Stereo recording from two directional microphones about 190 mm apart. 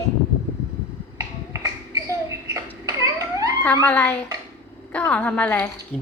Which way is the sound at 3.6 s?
10° left (ahead or behind).